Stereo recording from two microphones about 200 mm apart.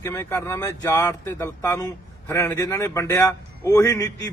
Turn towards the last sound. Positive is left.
turn(degrees=15)  # may be behind; listen again after turning